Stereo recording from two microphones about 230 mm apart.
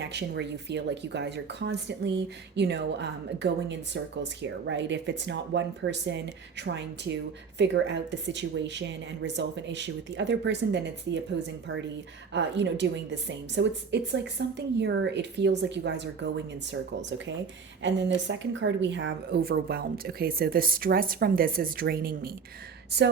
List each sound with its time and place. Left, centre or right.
0.0 s speech: right
12.3 s speech: right